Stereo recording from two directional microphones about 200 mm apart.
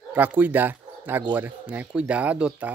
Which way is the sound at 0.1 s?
10° right (ahead or behind).